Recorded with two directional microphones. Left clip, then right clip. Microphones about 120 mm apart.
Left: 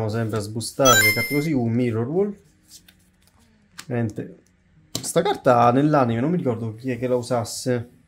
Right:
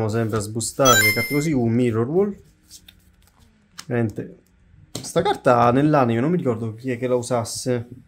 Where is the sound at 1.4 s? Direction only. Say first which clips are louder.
Right 2 dB; 25° right (ahead or behind).